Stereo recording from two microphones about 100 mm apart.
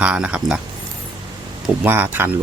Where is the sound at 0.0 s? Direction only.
10° right (ahead or behind).